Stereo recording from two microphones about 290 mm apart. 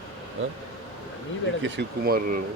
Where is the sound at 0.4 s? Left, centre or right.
Right.